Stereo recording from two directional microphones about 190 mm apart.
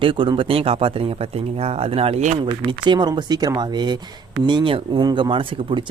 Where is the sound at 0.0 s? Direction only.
25° right (ahead or behind).